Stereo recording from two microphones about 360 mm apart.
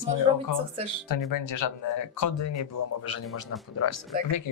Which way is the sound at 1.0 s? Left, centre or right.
Left.